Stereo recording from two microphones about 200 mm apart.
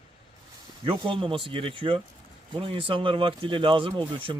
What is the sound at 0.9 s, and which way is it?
Speech, 25° right (ahead or behind).